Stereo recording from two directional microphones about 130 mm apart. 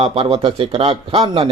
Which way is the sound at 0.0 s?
50° right (ahead or behind).